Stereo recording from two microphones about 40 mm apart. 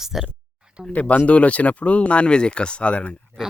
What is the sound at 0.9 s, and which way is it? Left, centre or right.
Speech, left.